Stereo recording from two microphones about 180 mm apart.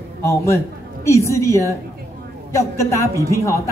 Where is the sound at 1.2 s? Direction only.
15° left (ahead or behind).